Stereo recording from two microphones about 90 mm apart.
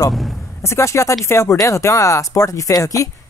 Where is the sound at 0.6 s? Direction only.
30° left (ahead or behind).